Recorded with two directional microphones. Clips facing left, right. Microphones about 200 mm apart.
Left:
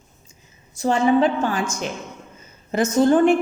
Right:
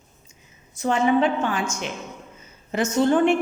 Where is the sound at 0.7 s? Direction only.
35° left (ahead or behind).